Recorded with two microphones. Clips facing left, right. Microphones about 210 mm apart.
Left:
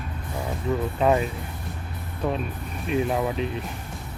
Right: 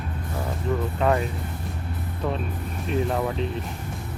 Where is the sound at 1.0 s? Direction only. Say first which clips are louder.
Left 2 dB; 20° left (ahead or behind).